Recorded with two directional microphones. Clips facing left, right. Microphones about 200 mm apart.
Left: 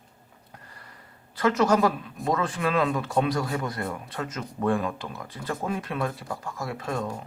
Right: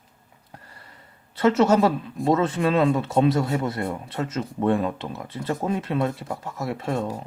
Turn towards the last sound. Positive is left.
turn(degrees=-30)  # may be behind; listen again after turning